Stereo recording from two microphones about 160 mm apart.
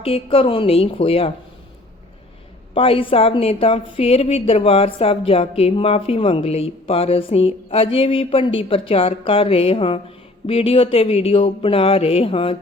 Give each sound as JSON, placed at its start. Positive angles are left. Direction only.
{"t": 0.0, "sound": "a woman's voice", "side_deg": 35}
{"t": 2.7, "sound": "a woman's voice", "side_deg": 35}